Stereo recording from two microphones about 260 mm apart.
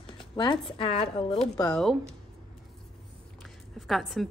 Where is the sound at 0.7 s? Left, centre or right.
Centre.